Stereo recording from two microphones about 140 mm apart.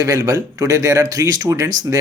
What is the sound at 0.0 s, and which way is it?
Speech, 25° right (ahead or behind).